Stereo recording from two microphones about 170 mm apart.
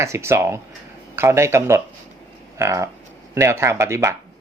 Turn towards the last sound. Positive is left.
turn(degrees=-15)  # may be behind; listen again after turning